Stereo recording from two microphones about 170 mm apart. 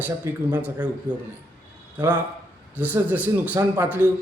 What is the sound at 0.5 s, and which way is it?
Speech, 10° right (ahead or behind).